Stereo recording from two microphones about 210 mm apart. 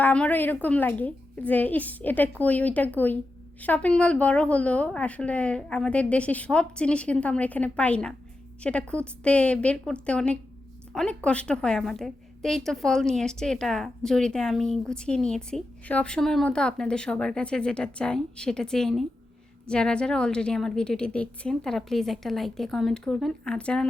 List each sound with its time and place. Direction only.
0.0 s a woman's voice: 5° left (ahead or behind)